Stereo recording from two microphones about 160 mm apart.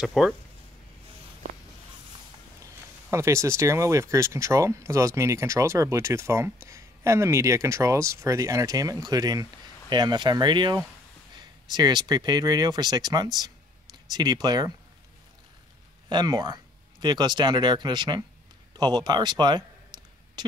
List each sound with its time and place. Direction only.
0.0 s speech: centre (ahead or behind)
2.6 s speech: 20° right (ahead or behind)
16.1 s speech: 25° right (ahead or behind)
18.8 s a sound: 25° right (ahead or behind)